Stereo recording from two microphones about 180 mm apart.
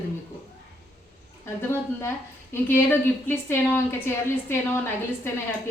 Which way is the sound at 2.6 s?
10° left (ahead or behind).